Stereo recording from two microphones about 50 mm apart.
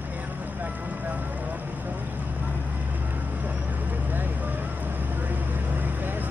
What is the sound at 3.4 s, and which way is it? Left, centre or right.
Vehicle, right.